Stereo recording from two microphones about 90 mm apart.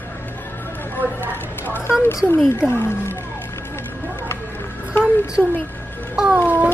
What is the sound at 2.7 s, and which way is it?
Speech, 25° left (ahead or behind).